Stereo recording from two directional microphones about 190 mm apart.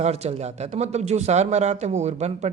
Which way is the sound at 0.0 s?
35° right (ahead or behind).